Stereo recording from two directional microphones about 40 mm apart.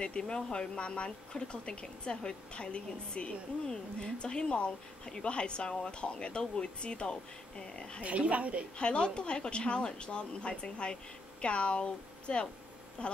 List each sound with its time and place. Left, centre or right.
0.0 s speech: left
8.0 s speech: right
8.7 s speech: left